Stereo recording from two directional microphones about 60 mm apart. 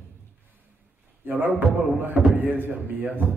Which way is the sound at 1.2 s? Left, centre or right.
Right.